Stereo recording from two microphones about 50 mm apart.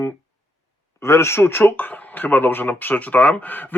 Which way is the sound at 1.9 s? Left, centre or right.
Left.